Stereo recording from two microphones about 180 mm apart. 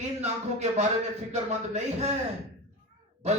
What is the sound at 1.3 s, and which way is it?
Speech, 40° right (ahead or behind).